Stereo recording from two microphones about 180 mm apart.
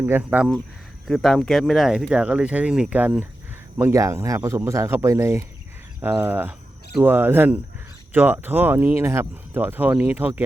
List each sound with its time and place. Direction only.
0.0 s speech: 10° right (ahead or behind)